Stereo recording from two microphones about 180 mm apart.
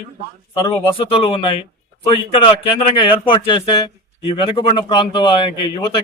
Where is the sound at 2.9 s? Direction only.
30° left (ahead or behind).